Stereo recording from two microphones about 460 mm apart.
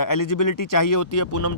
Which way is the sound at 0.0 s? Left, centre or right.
Left.